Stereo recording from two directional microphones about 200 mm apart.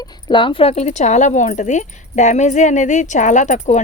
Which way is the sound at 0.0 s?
25° left (ahead or behind).